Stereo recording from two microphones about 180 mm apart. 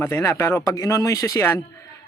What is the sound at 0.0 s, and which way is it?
Speech, 15° left (ahead or behind).